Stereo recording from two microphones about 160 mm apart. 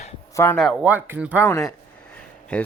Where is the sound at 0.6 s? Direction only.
Centre (ahead or behind).